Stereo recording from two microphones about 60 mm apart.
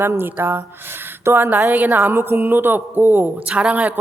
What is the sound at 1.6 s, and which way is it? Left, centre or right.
Speech, right.